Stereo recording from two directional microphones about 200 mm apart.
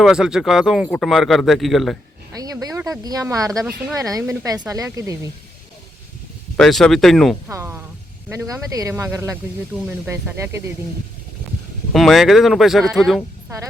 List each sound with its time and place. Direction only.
0.0 s speech: 5° right (ahead or behind)
2.3 s a sound: 15° right (ahead or behind)
3.0 s speech: 15° right (ahead or behind)
6.6 s speech: centre (ahead or behind)
7.4 s speech: 10° right (ahead or behind)
11.9 s speech: centre (ahead or behind)